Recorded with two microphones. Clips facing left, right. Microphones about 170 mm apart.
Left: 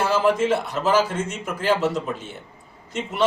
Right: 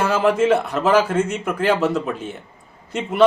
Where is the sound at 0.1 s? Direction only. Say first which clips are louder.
Right 4 dB; 65° right (ahead or behind).